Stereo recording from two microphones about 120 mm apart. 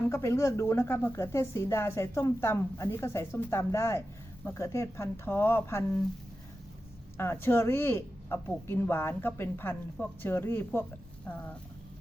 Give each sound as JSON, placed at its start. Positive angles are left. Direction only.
{"t": 0.1, "sound": "a woman's voice", "side_deg": 25}
{"t": 7.2, "sound": "speech", "side_deg": 20}